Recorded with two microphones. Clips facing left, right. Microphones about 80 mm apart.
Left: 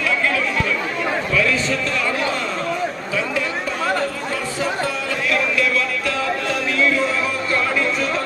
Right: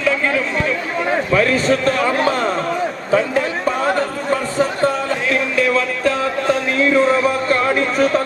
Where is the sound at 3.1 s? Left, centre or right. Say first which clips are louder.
Right 10 dB; right.